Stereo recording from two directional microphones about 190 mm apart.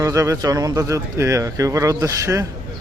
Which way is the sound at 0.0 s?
15° right (ahead or behind).